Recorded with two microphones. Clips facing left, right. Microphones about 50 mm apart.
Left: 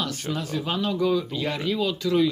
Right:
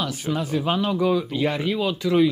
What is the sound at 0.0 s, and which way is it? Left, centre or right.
Speech, centre.